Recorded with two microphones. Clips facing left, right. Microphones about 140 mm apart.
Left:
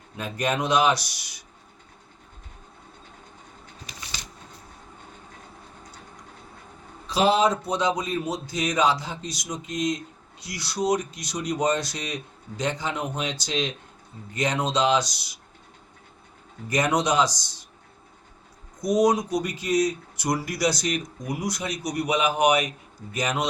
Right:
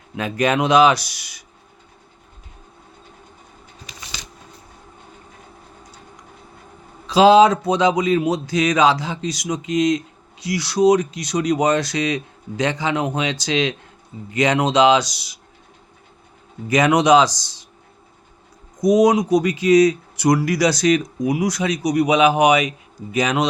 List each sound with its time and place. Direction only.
0.2 s speech: 90° right
7.1 s speech: 90° right
16.6 s speech: 90° right
18.8 s speech: 90° right